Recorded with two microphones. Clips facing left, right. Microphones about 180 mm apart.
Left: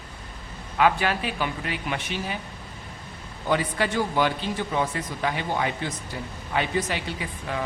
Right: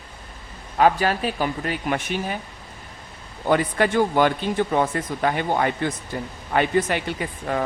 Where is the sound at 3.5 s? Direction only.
55° right (ahead or behind).